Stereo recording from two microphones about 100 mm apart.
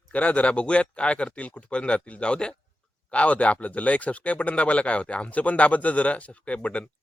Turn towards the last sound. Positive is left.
turn(degrees=15)  # may be behind; listen again after turning